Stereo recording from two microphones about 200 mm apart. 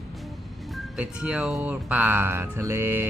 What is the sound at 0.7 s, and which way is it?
Speech, 5° right (ahead or behind).